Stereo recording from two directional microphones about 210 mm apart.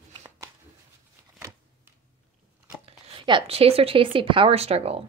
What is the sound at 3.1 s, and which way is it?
A woman's voice, 25° right (ahead or behind).